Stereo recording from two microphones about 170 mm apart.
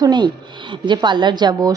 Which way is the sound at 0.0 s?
25° right (ahead or behind).